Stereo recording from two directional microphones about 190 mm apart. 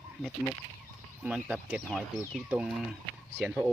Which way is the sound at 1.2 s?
5° right (ahead or behind).